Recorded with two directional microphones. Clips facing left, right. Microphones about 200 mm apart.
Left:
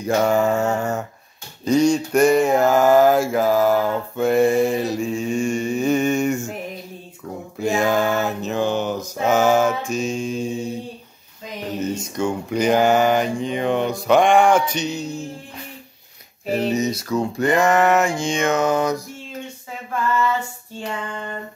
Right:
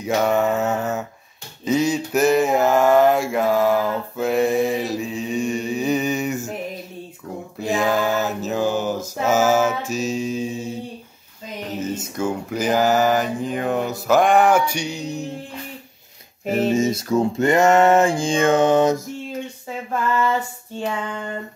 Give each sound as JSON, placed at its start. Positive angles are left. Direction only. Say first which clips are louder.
{"t": 0.0, "sound": "speech", "louder": "left 1 dB", "side_deg": 0}
{"t": 1.6, "sound": "mantra", "louder": "left 3 dB", "side_deg": -5}
{"t": 7.6, "sound": "mantra", "louder": "left 1 dB", "side_deg": 0}
{"t": 11.8, "sound": "speech", "louder": "left 1 dB", "side_deg": -5}
{"t": 16.7, "sound": "a sound", "louder": "right 2 dB", "side_deg": -25}